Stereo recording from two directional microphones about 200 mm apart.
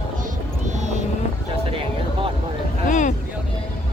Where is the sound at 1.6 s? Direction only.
25° right (ahead or behind).